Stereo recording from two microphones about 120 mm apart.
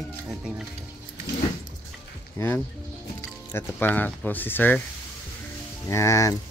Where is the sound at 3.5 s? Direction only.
15° left (ahead or behind).